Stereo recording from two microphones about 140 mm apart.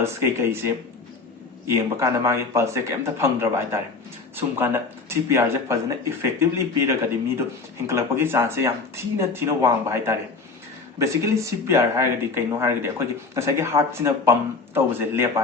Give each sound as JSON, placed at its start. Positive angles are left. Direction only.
{"t": 0.0, "sound": "speech", "side_deg": -20}